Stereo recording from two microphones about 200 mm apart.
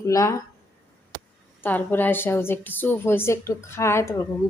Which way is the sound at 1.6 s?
10° left (ahead or behind).